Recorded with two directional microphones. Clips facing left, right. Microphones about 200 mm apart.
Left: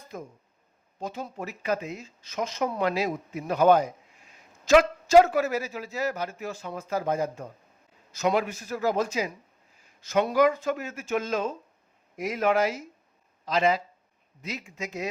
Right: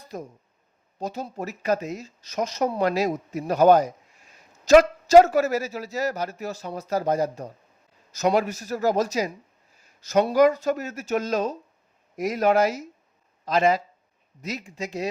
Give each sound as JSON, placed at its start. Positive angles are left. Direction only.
{"t": 0.1, "sound": "speech", "side_deg": -40}